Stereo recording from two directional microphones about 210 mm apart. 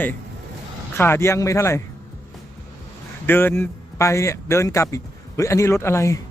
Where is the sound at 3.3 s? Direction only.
10° left (ahead or behind).